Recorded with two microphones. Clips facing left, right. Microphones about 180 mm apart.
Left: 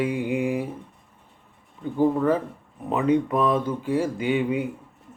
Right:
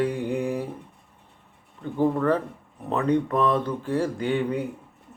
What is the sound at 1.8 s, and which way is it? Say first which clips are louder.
A man's voice: left 1 dB; 5° left (ahead or behind).